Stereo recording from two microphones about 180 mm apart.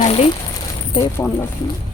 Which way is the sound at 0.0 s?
35° left (ahead or behind).